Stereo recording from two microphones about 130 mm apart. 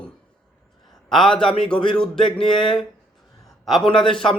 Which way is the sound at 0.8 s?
5° left (ahead or behind).